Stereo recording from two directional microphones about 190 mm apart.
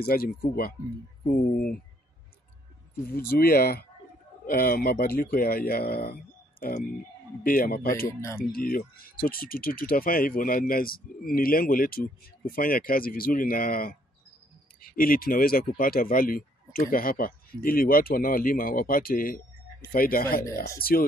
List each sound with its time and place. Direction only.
0.0 s speech: 50° left (ahead or behind)
2.9 s speech: 55° left (ahead or behind)
7.4 s speech: 50° left (ahead or behind)
8.1 s speech: 15° left (ahead or behind)
8.4 s speech: 50° left (ahead or behind)